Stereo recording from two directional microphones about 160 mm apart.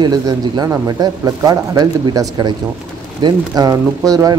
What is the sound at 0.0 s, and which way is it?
Speech, 25° right (ahead or behind).